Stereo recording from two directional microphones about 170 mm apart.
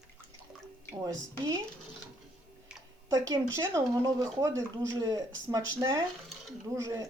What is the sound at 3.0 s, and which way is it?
Speech, 20° right (ahead or behind).